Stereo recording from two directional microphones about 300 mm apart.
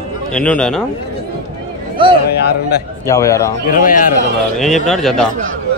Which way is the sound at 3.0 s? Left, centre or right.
Centre.